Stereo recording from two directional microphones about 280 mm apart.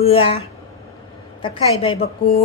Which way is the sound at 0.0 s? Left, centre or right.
Centre.